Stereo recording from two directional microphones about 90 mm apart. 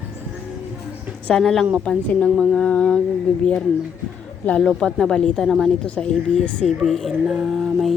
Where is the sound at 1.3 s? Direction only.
5° left (ahead or behind).